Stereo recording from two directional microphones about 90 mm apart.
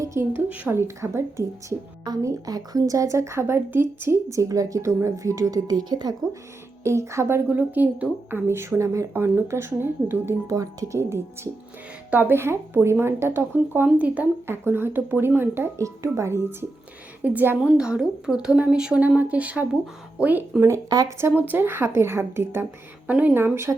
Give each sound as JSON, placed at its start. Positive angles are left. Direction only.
{"t": 0.0, "sound": "a sound", "side_deg": -35}
{"t": 0.3, "sound": "speech", "side_deg": -15}
{"t": 0.7, "sound": "a woman's voice", "side_deg": -30}
{"t": 2.2, "sound": "speech", "side_deg": -45}
{"t": 6.8, "sound": "speech", "side_deg": -30}
{"t": 7.4, "sound": "a woman's voice", "side_deg": -20}
{"t": 10.4, "sound": "speech", "side_deg": -40}
{"t": 12.1, "sound": "a woman's voice", "side_deg": -25}
{"t": 13.8, "sound": "speech", "side_deg": -15}
{"t": 14.4, "sound": "a woman's voice", "side_deg": -25}
{"t": 17.6, "sound": "speech", "side_deg": -10}
{"t": 20.6, "sound": "speech", "side_deg": -35}
{"t": 21.2, "sound": "a woman's voice", "side_deg": -25}